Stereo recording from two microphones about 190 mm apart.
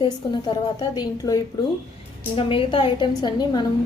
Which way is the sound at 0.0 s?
25° left (ahead or behind).